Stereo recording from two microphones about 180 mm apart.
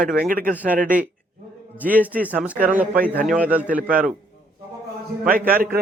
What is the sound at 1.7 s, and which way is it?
A man's voice, 10° right (ahead or behind).